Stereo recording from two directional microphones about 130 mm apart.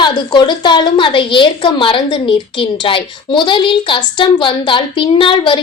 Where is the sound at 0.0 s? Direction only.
35° left (ahead or behind).